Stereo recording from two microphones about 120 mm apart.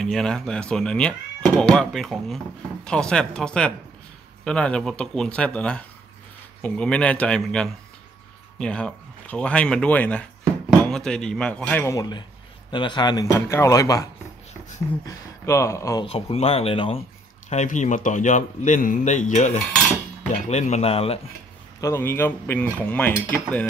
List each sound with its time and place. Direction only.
0.0 s speech: 5° left (ahead or behind)
11.9 s a man's voice: 35° left (ahead or behind)
15.0 s speech: 25° left (ahead or behind)
16.0 s speech: 55° left (ahead or behind)
17.5 s speech: 85° left; by 21.2 s 55° left (ahead or behind)
21.8 s speech: 20° left (ahead or behind)